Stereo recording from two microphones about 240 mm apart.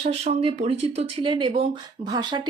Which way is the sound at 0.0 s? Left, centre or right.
Right.